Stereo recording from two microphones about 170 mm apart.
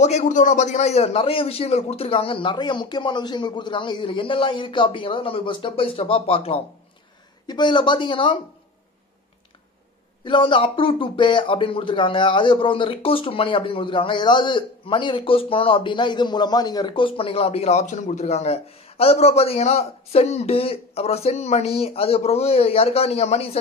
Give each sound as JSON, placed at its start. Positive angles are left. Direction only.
{"t": 0.0, "sound": "speech", "side_deg": 45}
{"t": 10.2, "sound": "speech", "side_deg": 30}